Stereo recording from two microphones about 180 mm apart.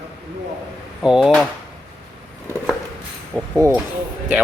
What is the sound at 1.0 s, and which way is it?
Speech, 5° right (ahead or behind).